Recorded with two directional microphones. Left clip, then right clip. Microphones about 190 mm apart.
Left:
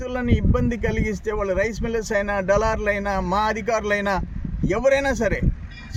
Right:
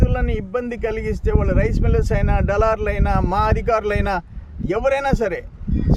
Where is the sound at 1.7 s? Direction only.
30° right (ahead or behind).